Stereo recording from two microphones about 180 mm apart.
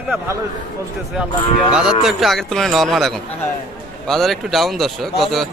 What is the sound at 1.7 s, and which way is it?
A man's voice, 5° right (ahead or behind).